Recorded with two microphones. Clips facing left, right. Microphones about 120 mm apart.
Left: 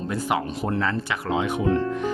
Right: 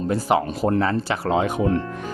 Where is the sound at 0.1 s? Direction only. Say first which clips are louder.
Right 5 dB; 30° right (ahead or behind).